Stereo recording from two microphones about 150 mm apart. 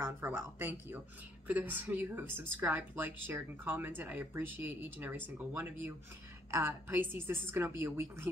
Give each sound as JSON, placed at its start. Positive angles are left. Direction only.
{"t": 0.0, "sound": "speech", "side_deg": -15}